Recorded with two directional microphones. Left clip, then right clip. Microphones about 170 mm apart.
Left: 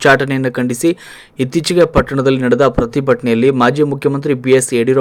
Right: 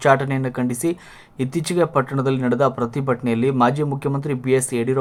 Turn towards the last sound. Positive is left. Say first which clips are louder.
# left 8 dB
turn(degrees=15)  # may be behind; listen again after turning